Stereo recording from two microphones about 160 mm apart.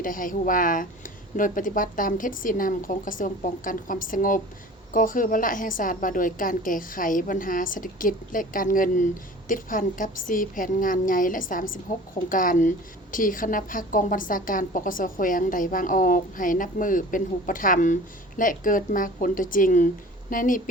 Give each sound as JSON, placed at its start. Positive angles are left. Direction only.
{"t": 0.0, "sound": "a woman's voice", "side_deg": 55}